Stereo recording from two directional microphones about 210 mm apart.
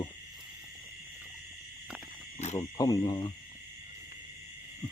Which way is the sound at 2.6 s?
20° left (ahead or behind).